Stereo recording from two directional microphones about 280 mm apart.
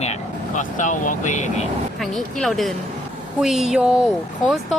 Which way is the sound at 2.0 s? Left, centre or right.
Centre.